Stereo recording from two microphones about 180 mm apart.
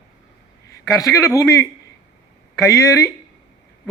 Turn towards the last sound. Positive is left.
turn(degrees=15)  # may be behind; listen again after turning